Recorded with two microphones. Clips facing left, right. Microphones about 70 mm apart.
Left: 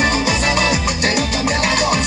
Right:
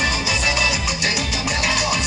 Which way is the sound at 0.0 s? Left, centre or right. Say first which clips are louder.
Left 5 dB; left.